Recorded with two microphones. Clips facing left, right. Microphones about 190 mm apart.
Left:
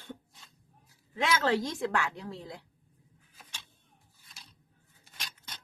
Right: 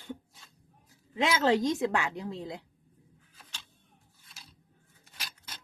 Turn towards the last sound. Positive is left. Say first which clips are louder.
# even
turn(degrees=-5)  # may be behind; listen again after turning